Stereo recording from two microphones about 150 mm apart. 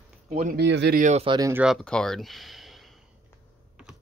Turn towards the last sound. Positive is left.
turn(degrees=0)  # may be behind; listen again after turning